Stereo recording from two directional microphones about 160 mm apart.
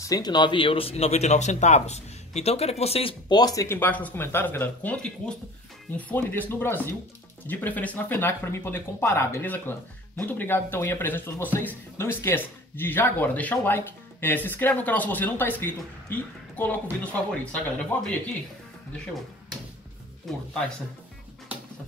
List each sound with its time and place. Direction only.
0.0 s speech: 25° left (ahead or behind)
20.3 s speech: centre (ahead or behind)